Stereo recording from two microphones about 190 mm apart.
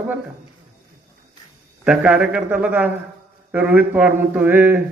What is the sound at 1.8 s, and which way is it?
A man's voice, 5° right (ahead or behind).